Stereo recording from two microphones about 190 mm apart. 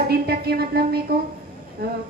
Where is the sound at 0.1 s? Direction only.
55° right (ahead or behind).